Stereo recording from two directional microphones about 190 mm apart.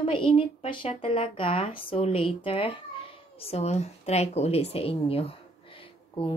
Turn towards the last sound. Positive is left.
turn(degrees=30)  # may be behind; listen again after turning